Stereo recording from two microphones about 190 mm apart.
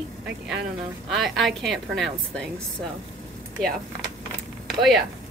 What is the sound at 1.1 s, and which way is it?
A woman's voice, centre (ahead or behind).